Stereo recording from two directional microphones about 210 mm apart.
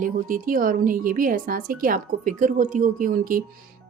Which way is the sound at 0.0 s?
40° right (ahead or behind).